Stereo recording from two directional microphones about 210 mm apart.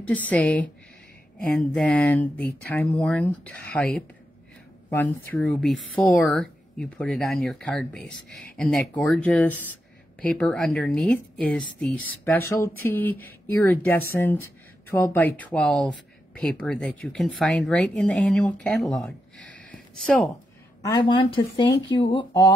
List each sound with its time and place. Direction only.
0.0 s speech: 5° left (ahead or behind)
19.5 s a sound: 5° left (ahead or behind)
20.8 s speech: 20° left (ahead or behind)